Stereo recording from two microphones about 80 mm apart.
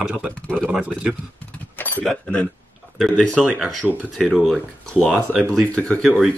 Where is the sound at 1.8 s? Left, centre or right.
Left.